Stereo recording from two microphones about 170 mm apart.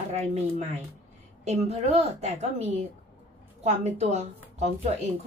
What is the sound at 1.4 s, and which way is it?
A woman's voice, 40° right (ahead or behind).